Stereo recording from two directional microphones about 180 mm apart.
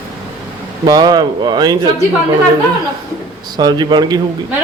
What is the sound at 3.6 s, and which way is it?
Speech, 25° right (ahead or behind).